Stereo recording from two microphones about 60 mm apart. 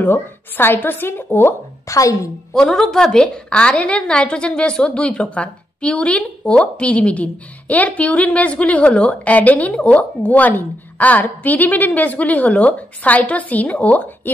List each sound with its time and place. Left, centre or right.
0.0 s a woman's voice: left
1.9 s a woman's voice: left
2.5 s a woman's voice: centre; by 14.3 s left